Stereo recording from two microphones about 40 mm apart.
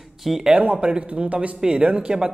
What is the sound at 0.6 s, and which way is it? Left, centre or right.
Speech, right.